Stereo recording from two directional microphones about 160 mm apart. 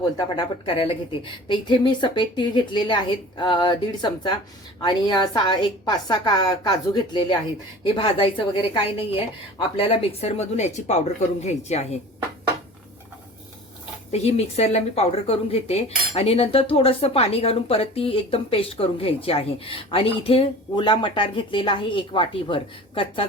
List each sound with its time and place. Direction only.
0.0 s a woman's voice: 30° left (ahead or behind)
14.1 s speech: 40° left (ahead or behind)